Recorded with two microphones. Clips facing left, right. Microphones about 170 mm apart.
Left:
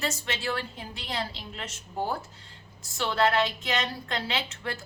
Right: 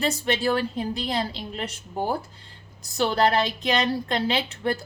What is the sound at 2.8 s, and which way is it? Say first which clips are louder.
A woman's voice: right 4 dB; 35° right (ahead or behind).